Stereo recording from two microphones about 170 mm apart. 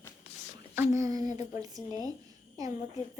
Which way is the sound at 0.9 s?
20° right (ahead or behind).